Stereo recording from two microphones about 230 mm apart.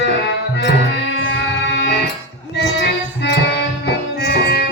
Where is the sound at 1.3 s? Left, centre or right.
Left.